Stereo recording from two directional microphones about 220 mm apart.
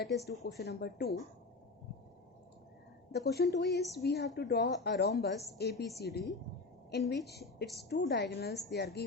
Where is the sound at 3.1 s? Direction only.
50° left (ahead or behind).